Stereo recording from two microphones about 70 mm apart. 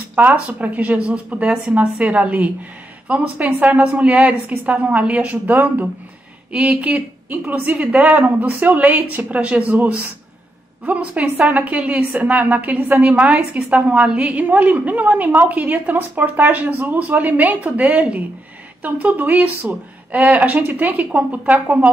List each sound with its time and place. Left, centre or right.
0.1 s a woman's voice: right